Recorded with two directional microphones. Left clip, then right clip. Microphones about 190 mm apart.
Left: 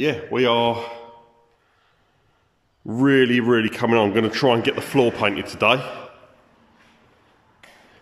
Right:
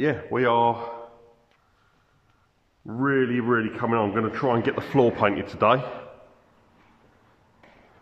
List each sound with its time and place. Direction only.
0.0 s speech: 5° left (ahead or behind)
2.9 s a man's voice: 20° left (ahead or behind)
4.6 s a man's voice: 5° left (ahead or behind)